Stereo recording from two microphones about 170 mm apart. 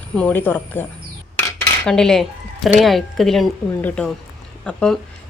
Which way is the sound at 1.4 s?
5° left (ahead or behind).